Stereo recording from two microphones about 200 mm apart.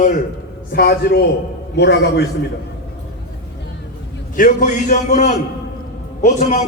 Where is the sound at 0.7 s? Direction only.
50° left (ahead or behind).